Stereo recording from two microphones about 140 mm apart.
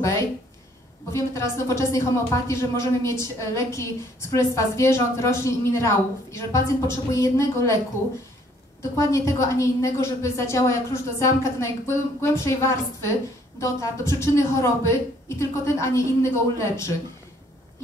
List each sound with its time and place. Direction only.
0.0 s speech: 20° left (ahead or behind)
8.9 s speech: 20° left (ahead or behind)